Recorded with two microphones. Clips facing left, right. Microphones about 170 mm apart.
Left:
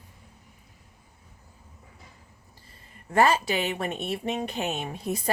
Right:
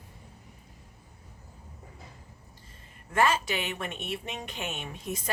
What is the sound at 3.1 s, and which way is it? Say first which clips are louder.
Speech: left 4 dB; 35° left (ahead or behind).